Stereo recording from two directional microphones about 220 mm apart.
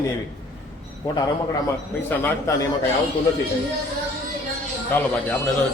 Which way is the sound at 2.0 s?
10° left (ahead or behind).